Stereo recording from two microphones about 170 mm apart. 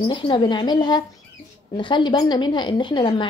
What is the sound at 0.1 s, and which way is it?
Speech, 30° left (ahead or behind).